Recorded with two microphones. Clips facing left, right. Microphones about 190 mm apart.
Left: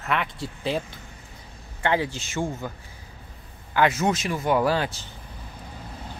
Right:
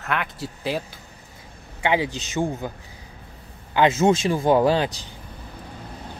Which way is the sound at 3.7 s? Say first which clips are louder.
Right 4 dB; 25° right (ahead or behind).